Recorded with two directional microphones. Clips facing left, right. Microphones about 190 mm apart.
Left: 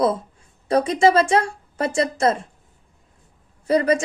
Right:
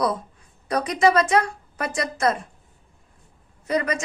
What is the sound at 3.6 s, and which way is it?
Speech, 30° left (ahead or behind).